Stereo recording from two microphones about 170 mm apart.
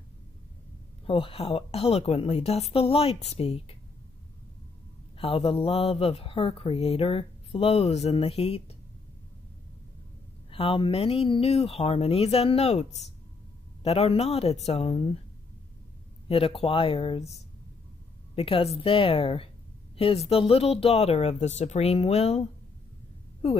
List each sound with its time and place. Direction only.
1.0 s speech: 30° left (ahead or behind)
5.1 s speech: 30° left (ahead or behind)
10.5 s speech: 30° left (ahead or behind)
16.3 s speech: 35° left (ahead or behind)
18.3 s speech: 35° left (ahead or behind)